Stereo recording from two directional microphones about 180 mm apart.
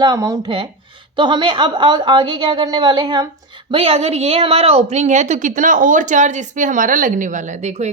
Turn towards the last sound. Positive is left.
turn(degrees=-40)  # may be behind; listen again after turning